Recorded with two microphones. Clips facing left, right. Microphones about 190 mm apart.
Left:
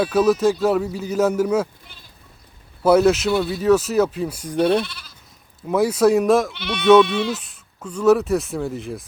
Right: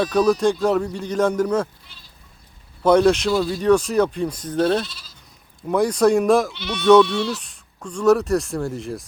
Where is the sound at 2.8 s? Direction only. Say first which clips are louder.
Even; 5° left (ahead or behind).